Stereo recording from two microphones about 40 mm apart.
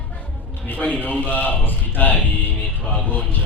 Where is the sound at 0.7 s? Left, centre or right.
Left.